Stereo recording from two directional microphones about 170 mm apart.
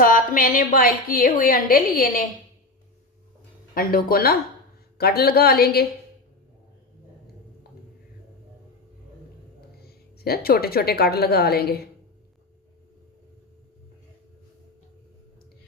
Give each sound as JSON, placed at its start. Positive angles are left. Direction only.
{"t": 0.0, "sound": "a woman's voice", "side_deg": 55}
{"t": 3.8, "sound": "a woman's voice", "side_deg": 60}
{"t": 9.8, "sound": "a woman's voice", "side_deg": 65}